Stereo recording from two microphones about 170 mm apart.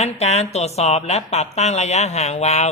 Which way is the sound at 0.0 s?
40° left (ahead or behind).